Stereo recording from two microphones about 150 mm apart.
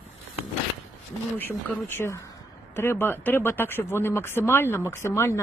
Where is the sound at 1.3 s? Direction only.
15° left (ahead or behind).